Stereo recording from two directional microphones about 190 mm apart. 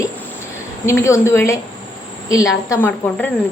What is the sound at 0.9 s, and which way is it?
A woman's voice, 15° left (ahead or behind).